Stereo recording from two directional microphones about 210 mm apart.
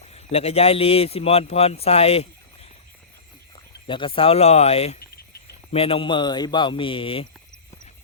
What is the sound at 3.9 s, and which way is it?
Speech, 25° left (ahead or behind).